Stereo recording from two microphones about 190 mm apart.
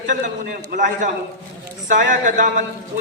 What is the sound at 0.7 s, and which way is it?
A man's voice, 40° right (ahead or behind).